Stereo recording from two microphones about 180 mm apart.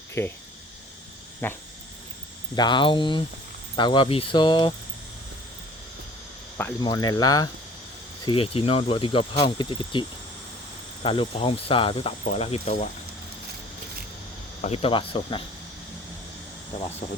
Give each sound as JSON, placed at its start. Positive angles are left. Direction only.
{"t": 0.1, "sound": "speech", "side_deg": 15}
{"t": 1.4, "sound": "a sound", "side_deg": 10}
{"t": 2.6, "sound": "speech", "side_deg": 25}
{"t": 6.8, "sound": "speech", "side_deg": 20}
{"t": 14.6, "sound": "speech", "side_deg": 35}
{"t": 17.0, "sound": "speech", "side_deg": 45}